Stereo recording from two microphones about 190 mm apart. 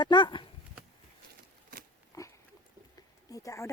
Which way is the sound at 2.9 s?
20° left (ahead or behind).